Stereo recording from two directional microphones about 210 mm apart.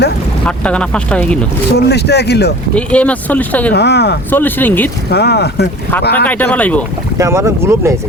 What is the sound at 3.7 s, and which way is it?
Speech, 50° left (ahead or behind).